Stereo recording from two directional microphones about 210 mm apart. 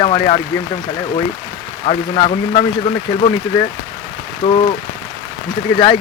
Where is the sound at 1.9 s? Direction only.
25° left (ahead or behind).